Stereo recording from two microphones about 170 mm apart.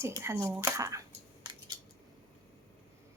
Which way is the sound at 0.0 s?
15° right (ahead or behind).